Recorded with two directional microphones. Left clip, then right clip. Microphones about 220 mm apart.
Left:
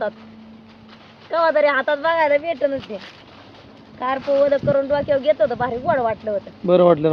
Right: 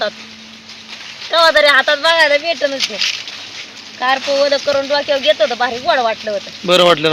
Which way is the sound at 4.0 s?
Centre (ahead or behind).